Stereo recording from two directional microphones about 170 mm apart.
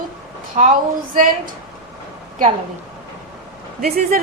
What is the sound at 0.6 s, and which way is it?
Speech, 40° right (ahead or behind).